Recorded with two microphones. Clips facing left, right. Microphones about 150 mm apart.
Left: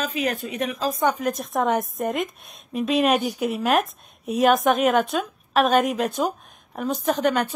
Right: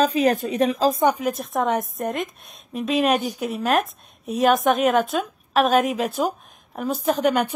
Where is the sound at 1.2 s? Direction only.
Centre (ahead or behind).